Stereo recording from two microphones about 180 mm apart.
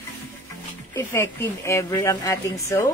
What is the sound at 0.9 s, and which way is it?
Speech, 15° left (ahead or behind).